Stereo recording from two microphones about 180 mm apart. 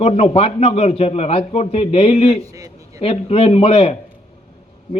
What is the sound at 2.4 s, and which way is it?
Speech, 20° right (ahead or behind).